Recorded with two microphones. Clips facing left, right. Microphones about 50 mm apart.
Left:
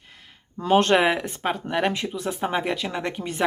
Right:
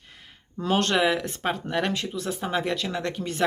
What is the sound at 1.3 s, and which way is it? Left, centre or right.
Speech, centre.